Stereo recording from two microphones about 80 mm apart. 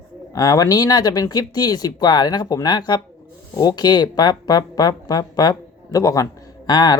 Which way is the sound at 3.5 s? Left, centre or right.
Left.